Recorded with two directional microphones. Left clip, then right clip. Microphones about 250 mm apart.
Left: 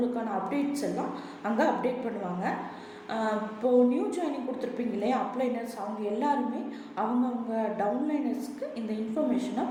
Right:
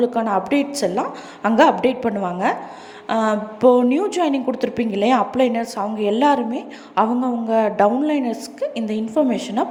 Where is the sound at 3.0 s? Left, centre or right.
Right.